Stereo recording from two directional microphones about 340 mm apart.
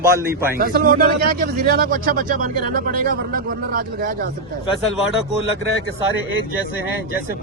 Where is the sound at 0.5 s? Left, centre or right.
Right.